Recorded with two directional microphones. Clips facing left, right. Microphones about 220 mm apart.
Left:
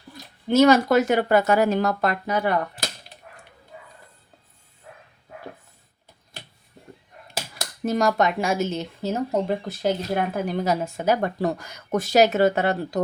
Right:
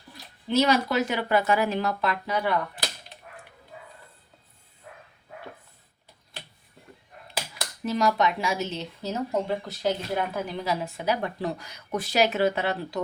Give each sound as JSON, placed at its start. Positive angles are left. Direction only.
{"t": 0.4, "sound": "speech", "side_deg": 45}
{"t": 7.6, "sound": "speech", "side_deg": 45}